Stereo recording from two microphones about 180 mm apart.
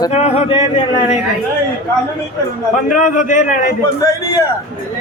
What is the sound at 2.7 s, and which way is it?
A man's voice, 45° left (ahead or behind).